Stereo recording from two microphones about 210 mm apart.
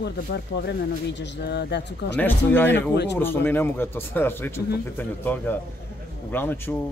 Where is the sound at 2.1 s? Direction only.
10° left (ahead or behind).